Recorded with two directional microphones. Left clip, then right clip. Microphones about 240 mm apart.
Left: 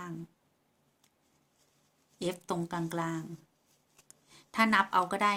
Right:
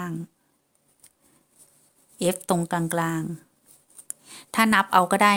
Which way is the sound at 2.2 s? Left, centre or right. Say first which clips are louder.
Right 10 dB; right.